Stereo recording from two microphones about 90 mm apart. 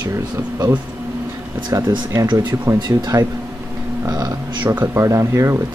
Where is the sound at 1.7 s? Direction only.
50° right (ahead or behind).